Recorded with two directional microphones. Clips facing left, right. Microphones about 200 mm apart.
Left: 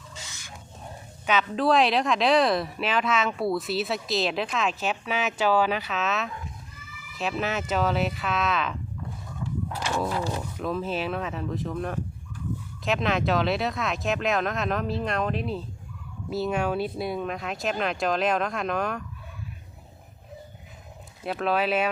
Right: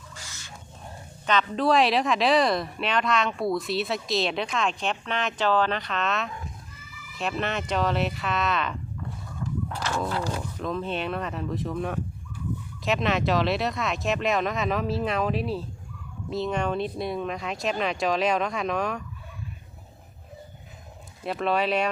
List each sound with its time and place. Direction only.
0.1 s bird: 25° left (ahead or behind)
1.3 s a woman's voice: 5° left (ahead or behind)
21.2 s a woman's voice: centre (ahead or behind)